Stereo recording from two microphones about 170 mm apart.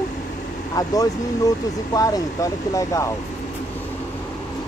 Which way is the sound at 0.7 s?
20° left (ahead or behind).